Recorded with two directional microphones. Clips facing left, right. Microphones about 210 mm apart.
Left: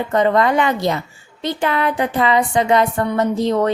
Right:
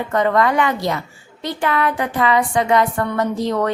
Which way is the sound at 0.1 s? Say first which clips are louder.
Left 1 dB; 25° left (ahead or behind).